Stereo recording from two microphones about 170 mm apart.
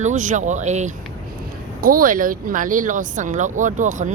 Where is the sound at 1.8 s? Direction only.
55° right (ahead or behind).